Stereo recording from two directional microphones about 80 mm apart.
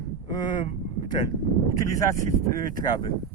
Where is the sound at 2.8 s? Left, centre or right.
Left.